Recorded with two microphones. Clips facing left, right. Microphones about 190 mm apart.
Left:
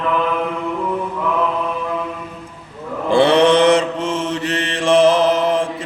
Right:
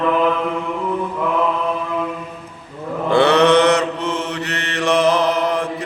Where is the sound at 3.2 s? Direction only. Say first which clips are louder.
Left 1 dB; 30° left (ahead or behind).